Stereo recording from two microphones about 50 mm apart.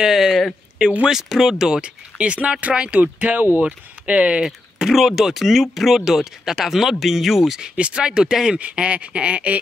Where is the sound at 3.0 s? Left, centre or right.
Right.